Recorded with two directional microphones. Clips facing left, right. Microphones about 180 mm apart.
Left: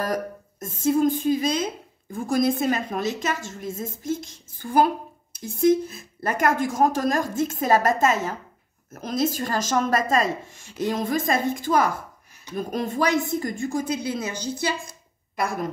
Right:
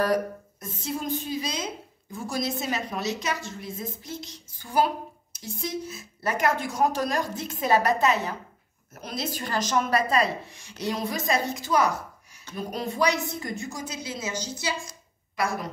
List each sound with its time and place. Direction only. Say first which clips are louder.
0.0 s speech: right 2 dB; 45° left (ahead or behind)